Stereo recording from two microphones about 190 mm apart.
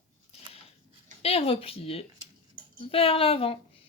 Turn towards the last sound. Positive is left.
turn(degrees=30)  # may be behind; listen again after turning